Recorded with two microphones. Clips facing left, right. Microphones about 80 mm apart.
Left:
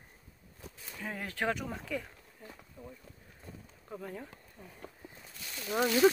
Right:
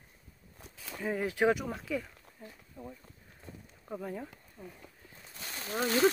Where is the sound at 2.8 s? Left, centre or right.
Right.